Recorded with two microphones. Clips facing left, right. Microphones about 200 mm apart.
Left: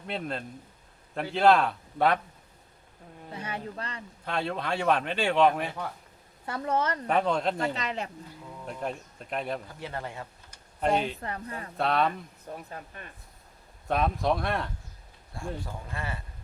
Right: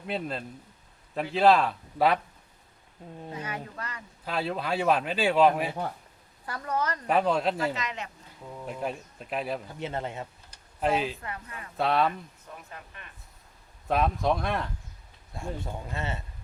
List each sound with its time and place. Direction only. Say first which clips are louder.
0.1 s speech: right 1 dB; centre (ahead or behind)
3.3 s speech: left 2 dB; 30° left (ahead or behind)
4.3 s speech: right 1 dB; 5° right (ahead or behind)
6.4 s a woman's voice: left 2 dB; 25° left (ahead or behind)
7.1 s speech: right 2 dB; 5° right (ahead or behind)
7.8 s speech: left 2 dB; 35° left (ahead or behind)
8.6 s speech: right 1 dB; 5° right (ahead or behind)
9.8 s speech: right 4 dB; 20° right (ahead or behind)
10.8 s speech: even; 5° right (ahead or behind)
11.2 s speech: left 4 dB; 35° left (ahead or behind)
11.8 s speech: right 1 dB; centre (ahead or behind)
12.5 s speech: left 9 dB; 40° left (ahead or behind)
13.8 s speech: right 1 dB; centre (ahead or behind)
15.6 s speech: right 3 dB; 25° right (ahead or behind)